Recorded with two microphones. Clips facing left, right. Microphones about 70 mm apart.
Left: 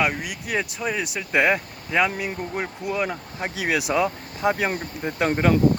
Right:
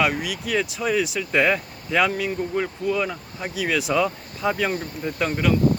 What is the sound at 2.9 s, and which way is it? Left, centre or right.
Speech, left.